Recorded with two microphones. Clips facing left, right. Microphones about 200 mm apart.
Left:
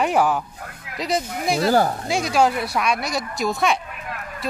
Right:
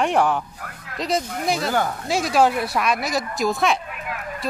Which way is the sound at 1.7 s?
35° left (ahead or behind).